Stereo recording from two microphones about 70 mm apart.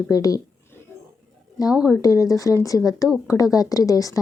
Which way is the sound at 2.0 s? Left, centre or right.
Left.